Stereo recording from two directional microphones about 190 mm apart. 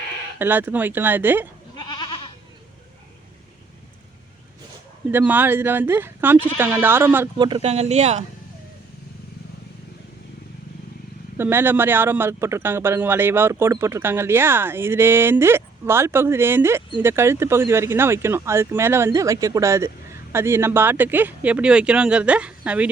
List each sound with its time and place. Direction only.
0.3 s speech: 10° right (ahead or behind)
1.7 s goat: 20° left (ahead or behind)
5.1 s speech: 10° right (ahead or behind)
7.3 s speech: 25° right (ahead or behind)
11.3 s speech: 10° right (ahead or behind)